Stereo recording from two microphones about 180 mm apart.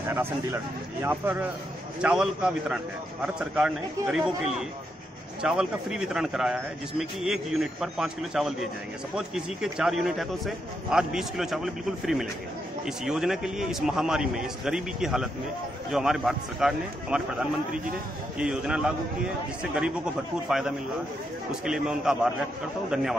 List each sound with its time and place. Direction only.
0.1 s a man's voice: 15° right (ahead or behind)
5.4 s a man's voice: 5° right (ahead or behind)